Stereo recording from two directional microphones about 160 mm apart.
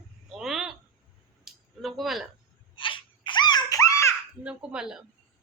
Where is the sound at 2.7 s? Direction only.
30° left (ahead or behind).